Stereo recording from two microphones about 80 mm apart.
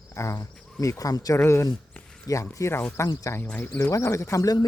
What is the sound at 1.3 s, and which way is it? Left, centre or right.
Speech, left.